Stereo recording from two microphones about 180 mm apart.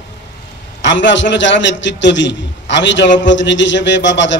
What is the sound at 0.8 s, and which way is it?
A man's voice, 90° left.